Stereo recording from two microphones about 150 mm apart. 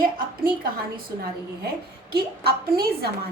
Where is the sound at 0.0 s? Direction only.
80° right.